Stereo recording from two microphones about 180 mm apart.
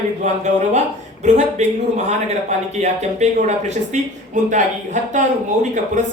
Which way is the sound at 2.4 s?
40° right (ahead or behind).